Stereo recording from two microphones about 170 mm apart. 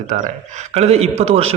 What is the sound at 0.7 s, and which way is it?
Speech, 40° right (ahead or behind).